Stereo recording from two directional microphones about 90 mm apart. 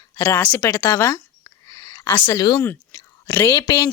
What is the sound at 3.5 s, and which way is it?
Speech, 35° left (ahead or behind).